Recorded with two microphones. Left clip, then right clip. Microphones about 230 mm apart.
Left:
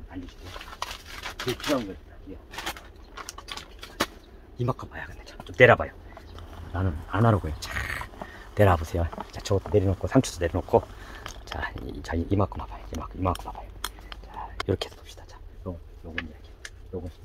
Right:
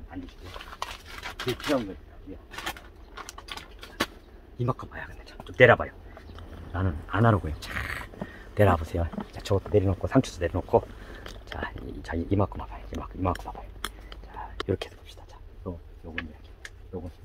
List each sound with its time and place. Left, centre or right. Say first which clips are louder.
0.1 s a sound: left 1 dB; centre
4.6 s speech: left 1 dB; centre
14.4 s whispering: left 2 dB; centre
14.7 s speech: left 2 dB; left
15.7 s speech: even; centre